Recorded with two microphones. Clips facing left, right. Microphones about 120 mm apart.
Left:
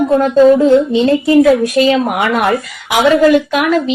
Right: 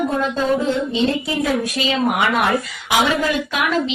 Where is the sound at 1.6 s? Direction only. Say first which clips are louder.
Left 8 dB; 55° left (ahead or behind).